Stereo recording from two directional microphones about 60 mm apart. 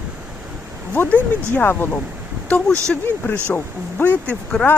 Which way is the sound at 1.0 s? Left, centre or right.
Left.